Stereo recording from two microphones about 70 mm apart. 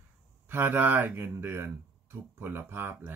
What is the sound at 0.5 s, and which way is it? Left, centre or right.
Speech, right.